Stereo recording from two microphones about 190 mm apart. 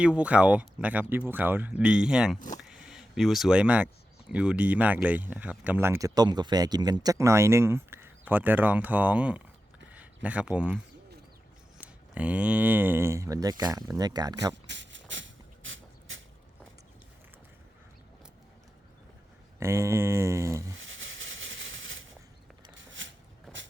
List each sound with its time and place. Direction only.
0.0 s speech: 5° right (ahead or behind)
2.6 s vehicle: centre (ahead or behind)
4.3 s speech: 5° right (ahead or behind)
9.9 s a sound: 5° right (ahead or behind)
11.8 s speech: 5° right (ahead or behind)
14.5 s a sound: 70° right (ahead or behind); by 16.2 s 90° right
19.5 s speech: 15° right (ahead or behind)
20.7 s a sound: 90° right
22.7 s shuffling cards: 80° right